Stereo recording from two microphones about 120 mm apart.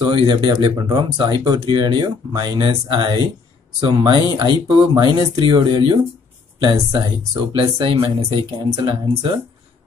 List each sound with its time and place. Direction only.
0.0 s speech: 40° right (ahead or behind)
0.8 s speech: 30° right (ahead or behind)